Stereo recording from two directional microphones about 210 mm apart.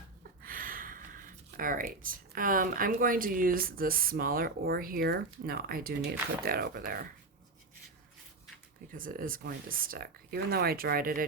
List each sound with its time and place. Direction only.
0.4 s speech: 40° right (ahead or behind)
8.9 s speech: 40° right (ahead or behind)